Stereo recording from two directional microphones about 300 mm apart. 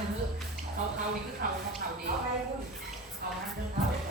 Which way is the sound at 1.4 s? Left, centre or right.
Right.